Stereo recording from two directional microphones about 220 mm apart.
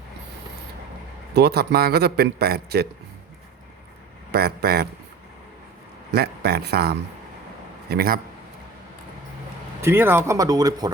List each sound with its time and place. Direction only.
1.3 s a man's voice: 45° right (ahead or behind)
4.3 s a man's voice: 45° right (ahead or behind)
6.1 s a man's voice: 45° right (ahead or behind)
9.8 s speech: 10° right (ahead or behind)